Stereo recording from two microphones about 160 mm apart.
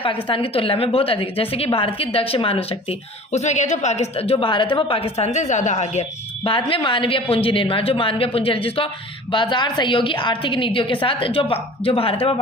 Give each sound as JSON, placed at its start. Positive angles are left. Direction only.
{"t": 0.3, "sound": "a woman's voice", "side_deg": 35}